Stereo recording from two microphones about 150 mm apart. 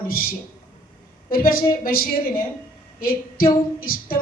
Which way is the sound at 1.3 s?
75° left (ahead or behind).